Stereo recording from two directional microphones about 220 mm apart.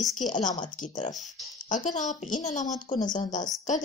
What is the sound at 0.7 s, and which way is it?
Speech, 35° left (ahead or behind).